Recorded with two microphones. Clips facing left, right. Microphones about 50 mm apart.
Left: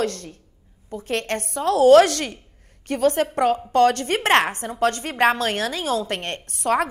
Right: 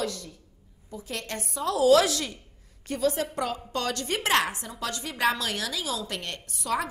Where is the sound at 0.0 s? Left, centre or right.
Left.